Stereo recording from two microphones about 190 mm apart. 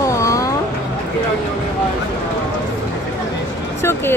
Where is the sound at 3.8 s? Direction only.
10° left (ahead or behind).